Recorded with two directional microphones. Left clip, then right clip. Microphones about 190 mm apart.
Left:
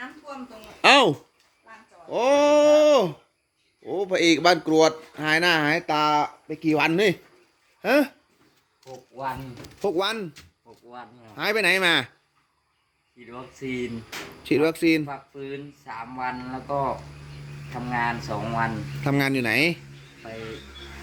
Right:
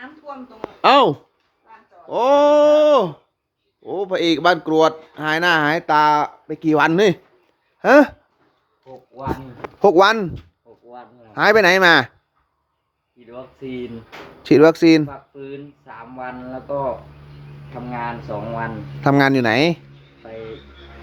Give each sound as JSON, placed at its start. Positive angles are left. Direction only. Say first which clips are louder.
{"t": 0.8, "sound": "a sound", "louder": "right 4 dB", "side_deg": -10}
{"t": 2.0, "sound": "speech", "louder": "right 5 dB", "side_deg": -10}
{"t": 8.8, "sound": "speech", "louder": "right 1 dB", "side_deg": 5}
{"t": 9.8, "sound": "speech", "louder": "right 13 dB", "side_deg": -35}
{"t": 10.8, "sound": "a sound", "louder": "right 2 dB", "side_deg": 5}
{"t": 11.3, "sound": "speech", "louder": "right 9 dB", "side_deg": -35}
{"t": 13.1, "sound": "speech", "louder": "right 3 dB", "side_deg": 10}
{"t": 14.4, "sound": "speech", "louder": "right 10 dB", "side_deg": -30}
{"t": 15.0, "sound": "speech", "louder": "right 3 dB", "side_deg": 10}
{"t": 19.0, "sound": "speech", "louder": "right 9 dB", "side_deg": -25}